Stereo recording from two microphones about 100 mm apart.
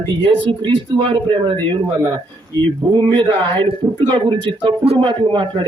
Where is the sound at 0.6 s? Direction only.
50° right (ahead or behind).